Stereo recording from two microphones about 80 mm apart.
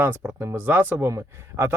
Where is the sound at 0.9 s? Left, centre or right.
Right.